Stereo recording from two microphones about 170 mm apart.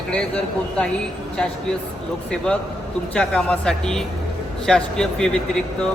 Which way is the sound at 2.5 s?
5° left (ahead or behind).